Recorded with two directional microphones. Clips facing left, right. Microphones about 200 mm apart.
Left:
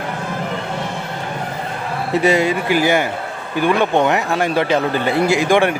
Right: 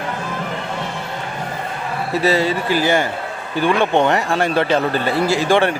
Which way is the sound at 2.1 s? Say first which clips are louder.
Left 2 dB; 15° left (ahead or behind).